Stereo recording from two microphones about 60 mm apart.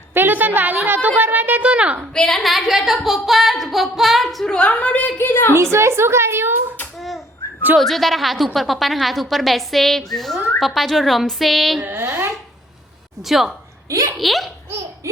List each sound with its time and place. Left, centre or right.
0.1 s a woman's voice: right
2.1 s a woman's voice: centre
4.5 s a woman's voice: left
5.1 s a woman's voice: left
5.7 s a woman's voice: right
7.8 s a woman's voice: centre
12.0 s a sound: right
13.2 s a woman's voice: centre
15.1 s speech: right